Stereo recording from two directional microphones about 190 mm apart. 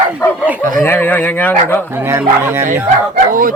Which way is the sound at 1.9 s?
15° right (ahead or behind).